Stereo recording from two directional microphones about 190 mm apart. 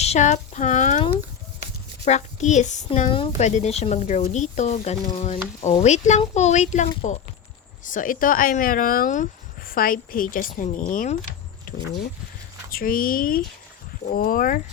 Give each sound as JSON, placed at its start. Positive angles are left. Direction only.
{"t": 0.0, "sound": "a sound", "side_deg": 35}
{"t": 2.0, "sound": "a woman's voice", "side_deg": 35}
{"t": 12.7, "sound": "speech", "side_deg": 50}